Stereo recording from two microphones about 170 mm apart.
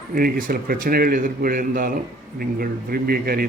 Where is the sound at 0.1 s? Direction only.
55° right (ahead or behind).